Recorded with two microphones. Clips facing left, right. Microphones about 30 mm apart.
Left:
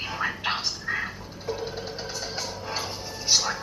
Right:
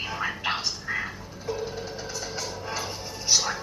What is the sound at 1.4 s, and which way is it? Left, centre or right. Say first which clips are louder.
Music: even; left.